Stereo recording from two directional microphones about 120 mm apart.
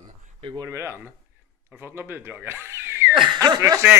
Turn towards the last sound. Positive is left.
turn(degrees=-25)  # may be behind; listen again after turning